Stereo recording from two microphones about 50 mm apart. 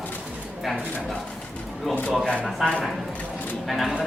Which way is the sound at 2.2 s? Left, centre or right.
Centre.